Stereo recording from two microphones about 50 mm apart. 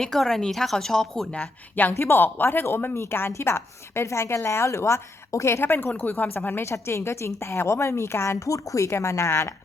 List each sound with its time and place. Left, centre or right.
0.0 s speech: centre
2.0 s speech: left
2.9 s a woman's voice: left
3.3 s a woman's voice: left
5.6 s speech: left
6.6 s a woman's voice: left